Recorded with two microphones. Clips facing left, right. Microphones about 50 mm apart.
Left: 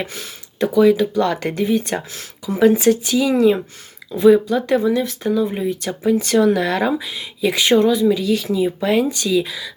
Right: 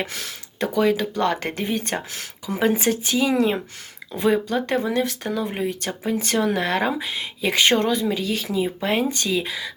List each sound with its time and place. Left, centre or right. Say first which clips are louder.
0.0 s speech: left 1 dB; right
0.6 s speech: left 6 dB; right
4.9 s speech: left 5 dB; right
6.1 s speech: left 7 dB; right